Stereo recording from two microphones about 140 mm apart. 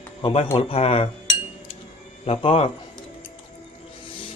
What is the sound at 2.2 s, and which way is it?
Speech, 45° left (ahead or behind).